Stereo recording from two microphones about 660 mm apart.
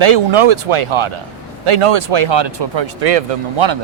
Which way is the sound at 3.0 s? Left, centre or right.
Right.